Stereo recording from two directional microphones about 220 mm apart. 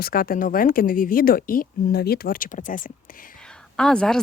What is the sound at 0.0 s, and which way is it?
Speech, 40° left (ahead or behind).